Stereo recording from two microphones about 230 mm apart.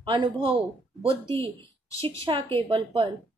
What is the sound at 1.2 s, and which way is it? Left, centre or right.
Speech, centre.